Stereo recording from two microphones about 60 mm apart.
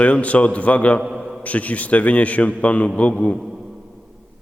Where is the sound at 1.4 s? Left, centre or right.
Left.